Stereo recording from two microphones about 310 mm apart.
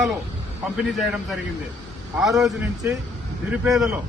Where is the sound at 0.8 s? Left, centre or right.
Centre.